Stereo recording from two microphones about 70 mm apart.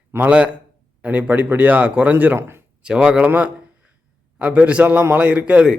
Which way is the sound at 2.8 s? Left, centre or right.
Centre.